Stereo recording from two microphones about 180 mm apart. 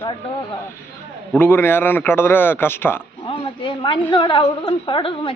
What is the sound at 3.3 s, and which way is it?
A woman's voice, 30° left (ahead or behind).